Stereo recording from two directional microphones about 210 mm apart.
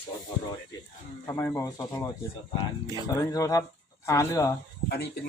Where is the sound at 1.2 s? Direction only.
10° left (ahead or behind).